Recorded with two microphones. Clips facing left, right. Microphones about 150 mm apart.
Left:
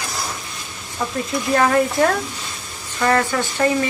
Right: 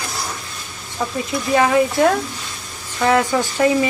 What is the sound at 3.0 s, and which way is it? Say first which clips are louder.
Speech: right 2 dB; 10° right (ahead or behind).